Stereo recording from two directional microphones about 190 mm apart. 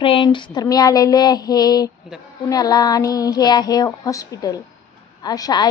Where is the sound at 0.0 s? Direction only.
25° left (ahead or behind).